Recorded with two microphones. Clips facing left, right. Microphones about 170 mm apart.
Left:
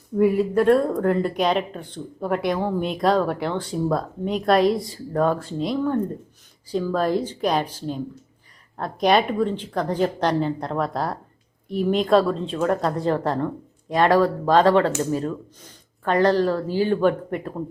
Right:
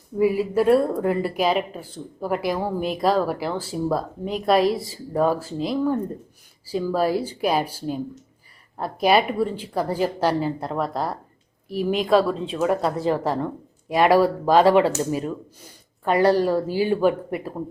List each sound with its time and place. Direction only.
0.2 s speech: 5° right (ahead or behind)